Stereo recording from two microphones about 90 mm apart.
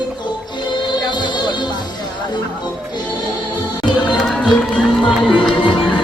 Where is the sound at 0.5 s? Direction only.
60° left (ahead or behind).